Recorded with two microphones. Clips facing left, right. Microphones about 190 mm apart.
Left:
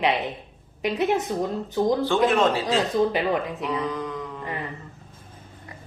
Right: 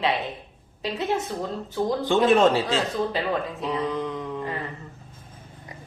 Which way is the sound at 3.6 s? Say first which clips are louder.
Right 1 dB; 25° right (ahead or behind).